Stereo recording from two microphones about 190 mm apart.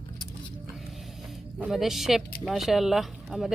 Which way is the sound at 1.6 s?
Centre (ahead or behind).